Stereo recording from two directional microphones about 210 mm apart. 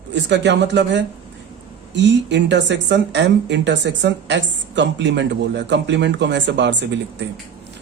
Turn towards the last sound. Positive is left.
turn(degrees=-55)  # may be behind; listen again after turning